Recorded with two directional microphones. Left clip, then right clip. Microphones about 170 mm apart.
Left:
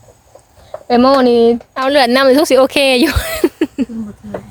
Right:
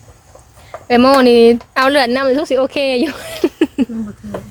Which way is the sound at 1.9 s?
15° left (ahead or behind).